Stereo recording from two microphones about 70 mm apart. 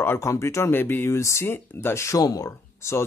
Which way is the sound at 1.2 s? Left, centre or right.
Left.